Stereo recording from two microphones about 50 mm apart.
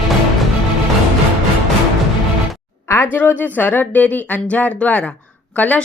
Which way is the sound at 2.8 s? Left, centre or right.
Left.